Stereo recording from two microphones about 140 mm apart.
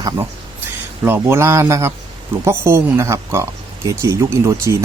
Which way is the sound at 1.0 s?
15° right (ahead or behind).